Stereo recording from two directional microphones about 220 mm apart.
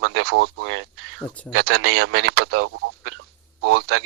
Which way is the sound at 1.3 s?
5° left (ahead or behind).